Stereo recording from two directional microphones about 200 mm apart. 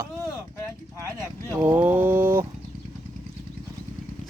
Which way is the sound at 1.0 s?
15° right (ahead or behind).